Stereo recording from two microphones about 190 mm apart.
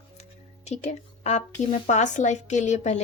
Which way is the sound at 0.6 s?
35° left (ahead or behind).